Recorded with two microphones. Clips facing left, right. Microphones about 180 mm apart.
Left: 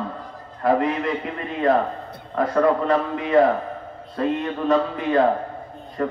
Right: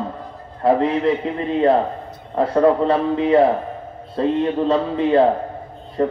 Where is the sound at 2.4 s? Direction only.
30° right (ahead or behind).